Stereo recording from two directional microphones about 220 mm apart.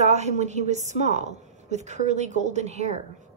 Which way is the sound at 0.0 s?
30° right (ahead or behind).